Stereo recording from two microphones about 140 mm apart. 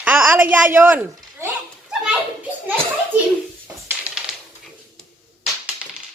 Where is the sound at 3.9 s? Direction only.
10° right (ahead or behind).